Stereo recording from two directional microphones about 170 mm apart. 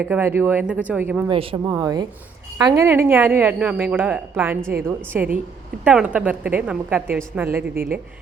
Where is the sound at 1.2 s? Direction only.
30° right (ahead or behind).